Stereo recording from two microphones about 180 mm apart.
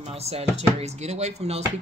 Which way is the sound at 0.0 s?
35° right (ahead or behind).